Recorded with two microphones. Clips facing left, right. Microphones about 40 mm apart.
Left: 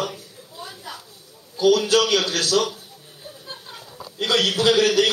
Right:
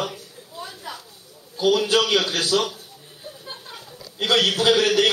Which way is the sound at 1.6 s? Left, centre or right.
Centre.